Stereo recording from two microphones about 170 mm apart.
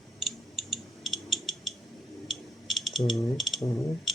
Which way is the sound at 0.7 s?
Centre (ahead or behind).